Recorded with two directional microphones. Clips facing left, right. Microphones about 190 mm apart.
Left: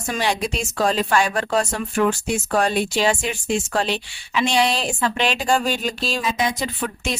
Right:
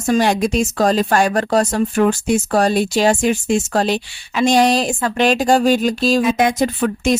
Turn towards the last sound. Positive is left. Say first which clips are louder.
# right 9 dB
turn(degrees=-45)  # may be behind; listen again after turning